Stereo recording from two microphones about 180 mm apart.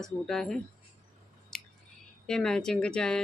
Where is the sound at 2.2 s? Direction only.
5° left (ahead or behind).